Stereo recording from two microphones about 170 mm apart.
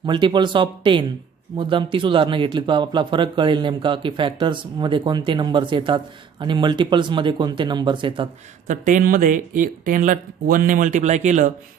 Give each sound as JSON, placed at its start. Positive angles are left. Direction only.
{"t": 0.0, "sound": "speech", "side_deg": -25}
{"t": 8.6, "sound": "speech", "side_deg": -50}